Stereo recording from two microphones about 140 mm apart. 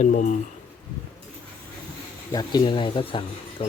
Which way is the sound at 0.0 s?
65° left (ahead or behind).